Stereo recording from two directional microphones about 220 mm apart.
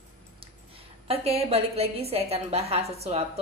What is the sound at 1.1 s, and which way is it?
A woman's voice, 25° right (ahead or behind).